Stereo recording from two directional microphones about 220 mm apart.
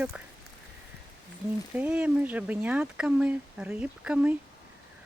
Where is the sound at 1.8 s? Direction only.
5° right (ahead or behind).